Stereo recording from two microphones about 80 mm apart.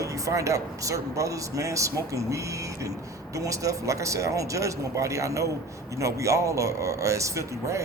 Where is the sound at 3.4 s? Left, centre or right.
Right.